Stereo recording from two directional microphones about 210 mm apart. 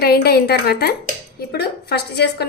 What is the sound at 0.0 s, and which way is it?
A woman's voice, 50° left (ahead or behind).